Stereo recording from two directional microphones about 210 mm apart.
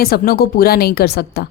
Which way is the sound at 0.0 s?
45° left (ahead or behind).